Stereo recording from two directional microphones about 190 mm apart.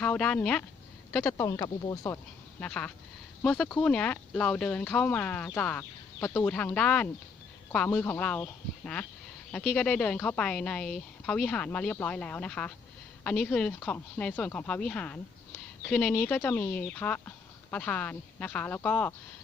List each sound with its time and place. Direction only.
0.0 s a woman's voice: 5° left (ahead or behind)
2.6 s a woman's voice: 5° left (ahead or behind)